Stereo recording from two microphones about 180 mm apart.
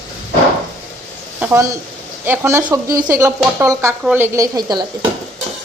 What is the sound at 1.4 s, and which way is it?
Speech, 15° right (ahead or behind).